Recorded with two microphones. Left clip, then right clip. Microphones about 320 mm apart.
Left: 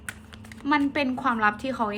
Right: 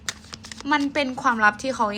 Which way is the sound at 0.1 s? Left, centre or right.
Centre.